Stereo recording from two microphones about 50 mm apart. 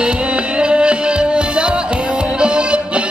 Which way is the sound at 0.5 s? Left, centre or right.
Right.